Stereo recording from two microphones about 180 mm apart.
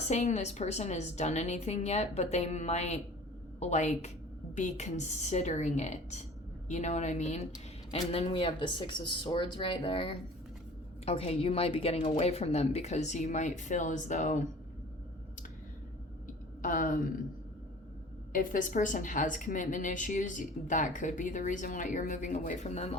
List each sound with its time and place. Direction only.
0.1 s a woman's voice: 40° left (ahead or behind)
16.2 s a sound: 50° left (ahead or behind)
18.3 s a woman's voice: 50° left (ahead or behind)